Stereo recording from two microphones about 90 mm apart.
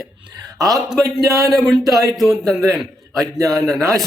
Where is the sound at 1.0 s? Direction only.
40° right (ahead or behind).